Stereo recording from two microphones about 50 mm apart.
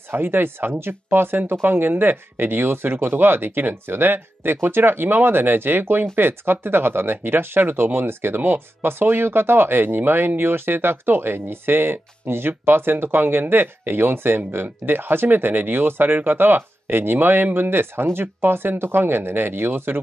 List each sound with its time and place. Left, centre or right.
0.1 s speech: right